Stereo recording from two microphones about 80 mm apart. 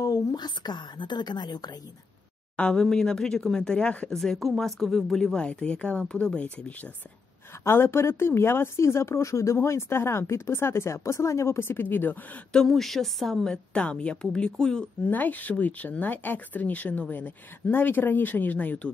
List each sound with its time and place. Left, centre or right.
0.0 s speech: left
2.5 s speech: centre
4.2 s speech: centre
7.6 s speech: left
12.5 s speech: centre
15.0 s speech: left